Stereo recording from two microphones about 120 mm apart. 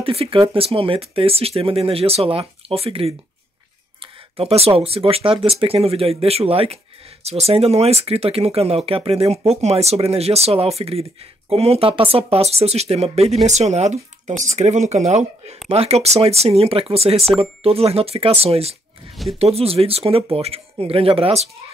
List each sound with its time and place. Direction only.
0.0 s speech: 50° right (ahead or behind)
4.4 s speech: 55° right (ahead or behind)